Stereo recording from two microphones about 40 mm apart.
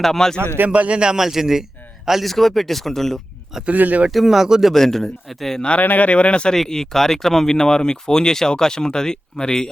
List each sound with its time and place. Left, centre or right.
0.0 s speech: centre
0.7 s speech: right
1.0 s a man's voice: centre
2.2 s speech: centre
3.7 s speech: right
4.1 s a man's voice: centre
4.7 s speech: centre
5.8 s speech: left
6.1 s speech: left
6.5 s speech: centre
7.5 s speech: centre